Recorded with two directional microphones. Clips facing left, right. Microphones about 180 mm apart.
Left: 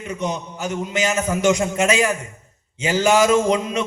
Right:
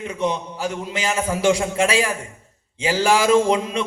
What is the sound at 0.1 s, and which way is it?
A man's voice, 30° right (ahead or behind).